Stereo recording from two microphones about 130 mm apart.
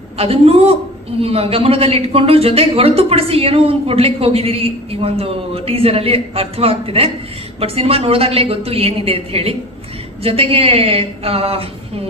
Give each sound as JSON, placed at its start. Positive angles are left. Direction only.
{"t": 0.2, "sound": "a man's voice", "side_deg": -50}